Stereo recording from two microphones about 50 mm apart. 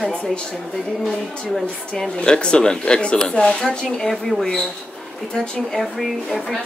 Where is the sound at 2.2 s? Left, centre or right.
Centre.